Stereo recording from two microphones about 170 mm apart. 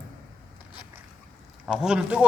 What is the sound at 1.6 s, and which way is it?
Speech, 5° right (ahead or behind).